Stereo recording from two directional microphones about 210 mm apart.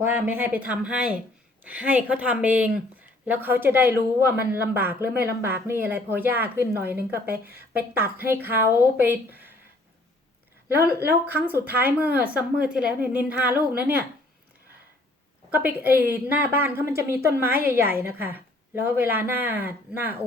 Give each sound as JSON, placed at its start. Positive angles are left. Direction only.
{"t": 0.0, "sound": "speech", "side_deg": -10}
{"t": 10.8, "sound": "speech", "side_deg": -10}
{"t": 15.4, "sound": "speech", "side_deg": -10}